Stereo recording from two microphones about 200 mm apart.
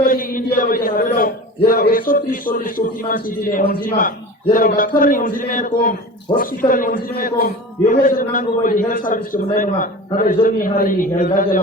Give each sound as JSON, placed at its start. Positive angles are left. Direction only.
{"t": 0.0, "sound": "a man's voice", "side_deg": 45}